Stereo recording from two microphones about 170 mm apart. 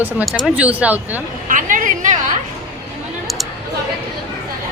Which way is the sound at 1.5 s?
50° right (ahead or behind).